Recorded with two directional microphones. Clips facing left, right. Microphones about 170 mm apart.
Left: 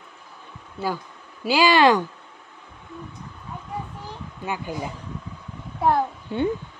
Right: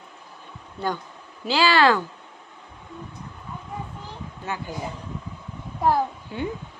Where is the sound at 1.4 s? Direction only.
15° left (ahead or behind).